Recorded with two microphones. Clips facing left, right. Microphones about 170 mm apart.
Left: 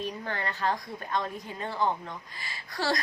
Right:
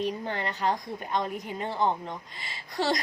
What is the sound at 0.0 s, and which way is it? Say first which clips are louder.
A woman's voice: right 3 dB; 20° right (ahead or behind).